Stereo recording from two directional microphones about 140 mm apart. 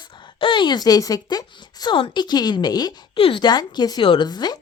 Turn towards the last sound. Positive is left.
turn(degrees=30)  # may be behind; listen again after turning